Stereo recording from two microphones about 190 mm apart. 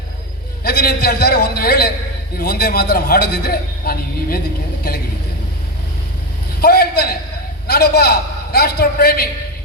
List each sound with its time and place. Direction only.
0.6 s a man's voice: 55° left (ahead or behind)
6.6 s a man's voice: 55° left (ahead or behind)